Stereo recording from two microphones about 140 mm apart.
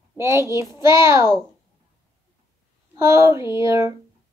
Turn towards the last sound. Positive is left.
turn(degrees=-20)  # may be behind; listen again after turning